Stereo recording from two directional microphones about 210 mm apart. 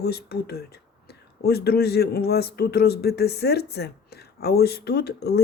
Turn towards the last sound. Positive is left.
turn(degrees=50)  # may be behind; listen again after turning